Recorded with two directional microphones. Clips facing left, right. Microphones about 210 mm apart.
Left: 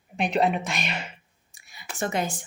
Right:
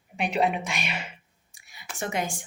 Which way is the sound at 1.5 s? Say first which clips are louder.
Left 2 dB; 10° right (ahead or behind).